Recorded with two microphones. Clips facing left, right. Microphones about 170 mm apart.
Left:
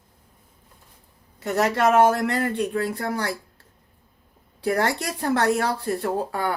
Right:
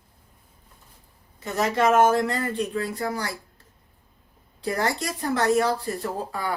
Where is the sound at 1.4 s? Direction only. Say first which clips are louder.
Left 2 dB; 70° left (ahead or behind).